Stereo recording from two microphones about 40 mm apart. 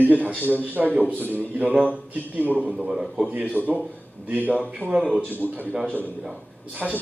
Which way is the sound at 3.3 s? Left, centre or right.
Right.